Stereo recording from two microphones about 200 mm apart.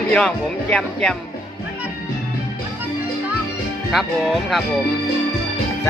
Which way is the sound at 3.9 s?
Centre (ahead or behind).